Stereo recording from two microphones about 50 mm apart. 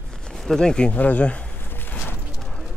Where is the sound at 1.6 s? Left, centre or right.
Left.